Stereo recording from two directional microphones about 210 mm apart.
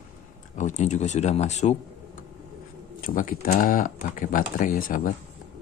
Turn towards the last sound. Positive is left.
turn(degrees=40)  # may be behind; listen again after turning